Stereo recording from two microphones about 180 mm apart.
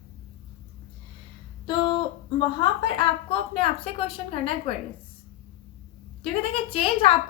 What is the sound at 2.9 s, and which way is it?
A woman's voice, 30° left (ahead or behind).